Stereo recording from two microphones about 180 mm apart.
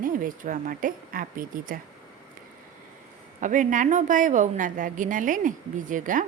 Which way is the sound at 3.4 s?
45° right (ahead or behind).